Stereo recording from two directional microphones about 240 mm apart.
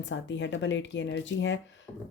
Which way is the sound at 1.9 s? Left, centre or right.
Centre.